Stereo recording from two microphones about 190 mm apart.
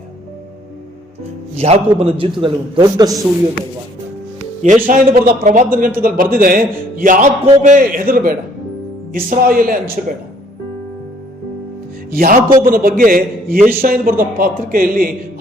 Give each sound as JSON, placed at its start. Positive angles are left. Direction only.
{"t": 1.5, "sound": "a man's voice", "side_deg": -35}
{"t": 4.6, "sound": "a man's voice", "side_deg": -40}
{"t": 12.1, "sound": "a man's voice", "side_deg": -50}